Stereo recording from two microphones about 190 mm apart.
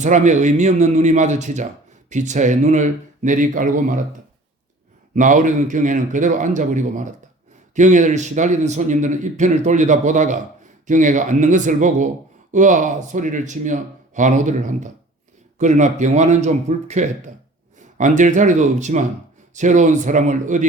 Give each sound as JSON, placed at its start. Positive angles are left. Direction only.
{"t": 0.0, "sound": "speech", "side_deg": -40}
{"t": 5.1, "sound": "speech", "side_deg": -40}